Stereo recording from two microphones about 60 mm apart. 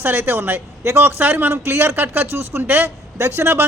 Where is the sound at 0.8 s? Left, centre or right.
Right.